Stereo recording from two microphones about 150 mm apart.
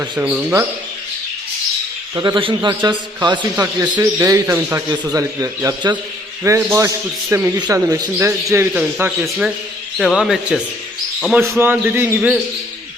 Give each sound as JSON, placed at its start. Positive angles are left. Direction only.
{"t": 0.0, "sound": "a man's voice", "side_deg": -15}
{"t": 2.1, "sound": "a man's voice", "side_deg": -30}
{"t": 3.5, "sound": "a man's voice", "side_deg": -20}
{"t": 4.9, "sound": "a man's voice", "side_deg": -25}
{"t": 11.3, "sound": "a man's voice", "side_deg": -15}